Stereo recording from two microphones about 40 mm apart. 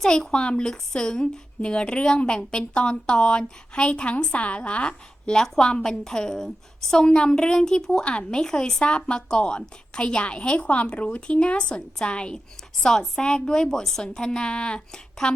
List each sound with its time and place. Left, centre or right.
0.0 s a woman's voice: centre
0.3 s a woman's voice: left